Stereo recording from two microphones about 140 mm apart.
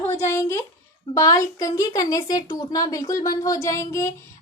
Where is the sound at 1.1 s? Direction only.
25° left (ahead or behind).